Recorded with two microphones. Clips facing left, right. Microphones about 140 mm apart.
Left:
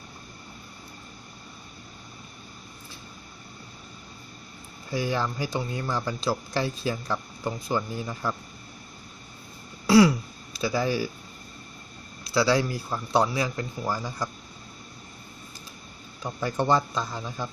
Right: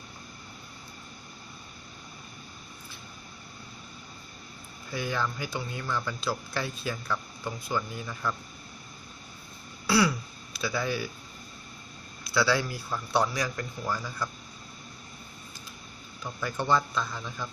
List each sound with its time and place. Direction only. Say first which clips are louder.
4.9 s speech: left 4 dB; 30° left (ahead or behind)
10.6 s speech: left 5 dB; 35° left (ahead or behind)
12.4 s speech: left 4 dB; 30° left (ahead or behind)
16.3 s speech: left 3 dB; 35° left (ahead or behind)